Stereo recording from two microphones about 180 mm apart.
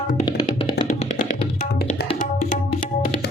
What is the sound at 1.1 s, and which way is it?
Music, 55° left (ahead or behind).